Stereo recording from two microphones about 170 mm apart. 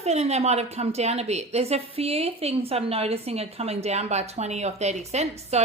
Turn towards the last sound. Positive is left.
turn(degrees=-40)  # may be behind; listen again after turning